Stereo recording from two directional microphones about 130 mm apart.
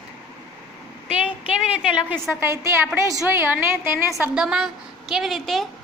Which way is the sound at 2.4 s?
20° right (ahead or behind).